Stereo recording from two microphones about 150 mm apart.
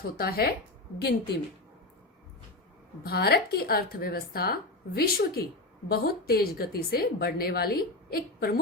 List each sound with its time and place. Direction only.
0.2 s a woman's voice: 90° left
3.0 s a woman's voice: 90° left